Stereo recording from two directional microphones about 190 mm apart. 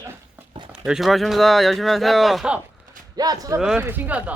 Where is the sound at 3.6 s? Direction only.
5° right (ahead or behind).